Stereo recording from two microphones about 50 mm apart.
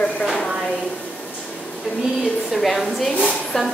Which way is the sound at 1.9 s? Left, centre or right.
Centre.